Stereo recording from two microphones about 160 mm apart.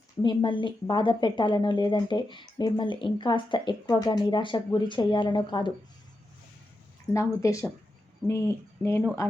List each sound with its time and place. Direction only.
0.2 s a woman's voice: 30° left (ahead or behind)
7.4 s a woman's voice: 20° left (ahead or behind)